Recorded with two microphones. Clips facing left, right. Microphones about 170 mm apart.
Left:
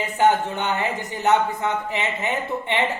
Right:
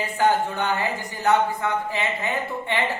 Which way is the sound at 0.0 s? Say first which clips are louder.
Left 2 dB; 20° left (ahead or behind).